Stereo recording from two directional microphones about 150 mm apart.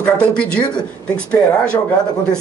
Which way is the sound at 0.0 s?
5° left (ahead or behind).